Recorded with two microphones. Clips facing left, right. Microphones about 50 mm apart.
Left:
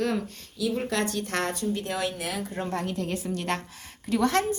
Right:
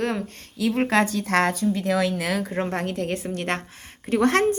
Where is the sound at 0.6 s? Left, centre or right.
Right.